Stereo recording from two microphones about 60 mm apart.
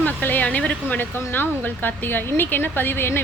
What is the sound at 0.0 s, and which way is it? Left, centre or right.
Speech, left.